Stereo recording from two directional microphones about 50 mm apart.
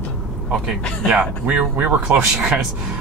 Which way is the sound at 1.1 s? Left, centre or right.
Right.